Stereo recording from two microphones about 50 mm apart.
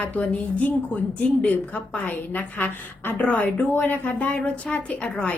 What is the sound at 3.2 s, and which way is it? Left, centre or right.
A woman's voice, left.